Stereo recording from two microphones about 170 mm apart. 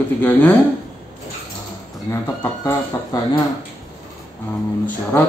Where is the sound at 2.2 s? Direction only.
20° left (ahead or behind).